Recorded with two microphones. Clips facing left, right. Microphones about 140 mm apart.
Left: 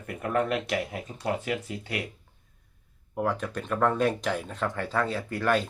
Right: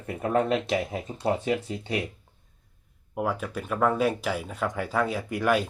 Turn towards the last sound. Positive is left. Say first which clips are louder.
# right 1 dB
turn(degrees=-10)  # may be behind; listen again after turning